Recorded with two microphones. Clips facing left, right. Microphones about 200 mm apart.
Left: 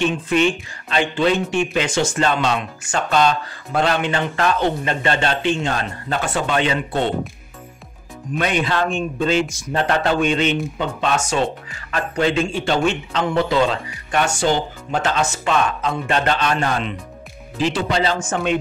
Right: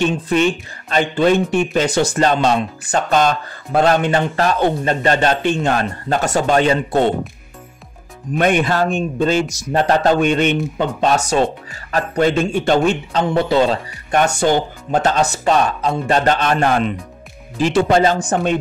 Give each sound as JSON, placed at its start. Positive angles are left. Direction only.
{"t": 0.0, "sound": "speech", "side_deg": -40}
{"t": 8.4, "sound": "speech", "side_deg": -50}